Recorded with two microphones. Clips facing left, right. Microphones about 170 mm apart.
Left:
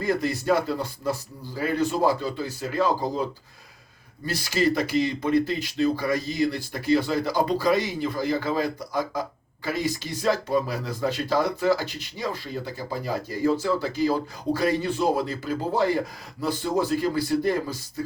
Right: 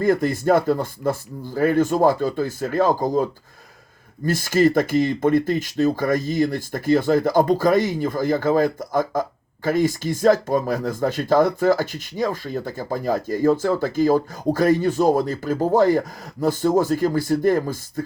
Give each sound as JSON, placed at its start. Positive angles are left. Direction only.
{"t": 0.0, "sound": "speech", "side_deg": -50}
{"t": 4.3, "sound": "speech", "side_deg": -50}